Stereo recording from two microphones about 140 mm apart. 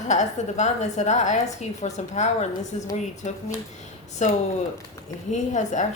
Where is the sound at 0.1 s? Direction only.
55° left (ahead or behind).